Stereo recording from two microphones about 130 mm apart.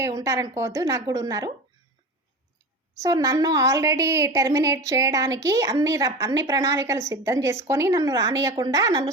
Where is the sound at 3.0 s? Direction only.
25° right (ahead or behind).